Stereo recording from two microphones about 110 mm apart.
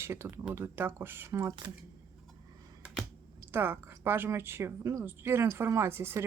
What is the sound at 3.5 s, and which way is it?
A woman's voice, 20° right (ahead or behind).